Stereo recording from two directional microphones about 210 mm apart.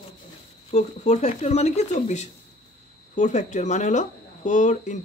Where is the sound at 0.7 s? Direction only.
35° left (ahead or behind).